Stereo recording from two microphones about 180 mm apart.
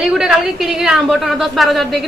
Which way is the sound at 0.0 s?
5° right (ahead or behind).